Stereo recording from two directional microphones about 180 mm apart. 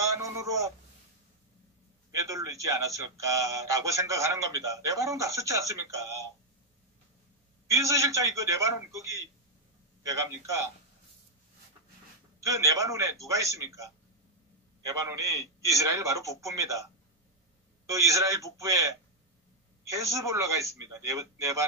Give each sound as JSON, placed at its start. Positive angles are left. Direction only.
{"t": 0.0, "sound": "a sound", "side_deg": -20}
{"t": 2.2, "sound": "speech", "side_deg": -20}
{"t": 7.7, "sound": "speech", "side_deg": -20}
{"t": 12.4, "sound": "speech", "side_deg": -20}
{"t": 17.8, "sound": "speech", "side_deg": -15}